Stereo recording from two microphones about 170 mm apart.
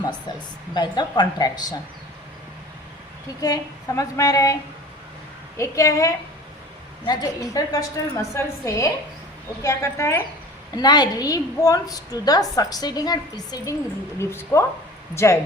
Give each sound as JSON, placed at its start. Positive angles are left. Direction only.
{"t": 0.7, "sound": "a woman's voice", "side_deg": 25}
{"t": 3.4, "sound": "a woman's voice", "side_deg": 20}
{"t": 5.5, "sound": "a woman's voice", "side_deg": 20}